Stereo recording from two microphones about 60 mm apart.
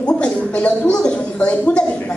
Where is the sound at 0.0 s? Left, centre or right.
Centre.